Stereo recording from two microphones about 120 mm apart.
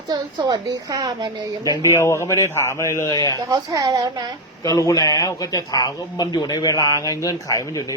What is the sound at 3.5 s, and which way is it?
Speech, 30° right (ahead or behind).